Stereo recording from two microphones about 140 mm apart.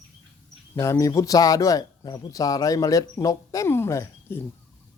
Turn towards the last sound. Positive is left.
turn(degrees=20)  # may be behind; listen again after turning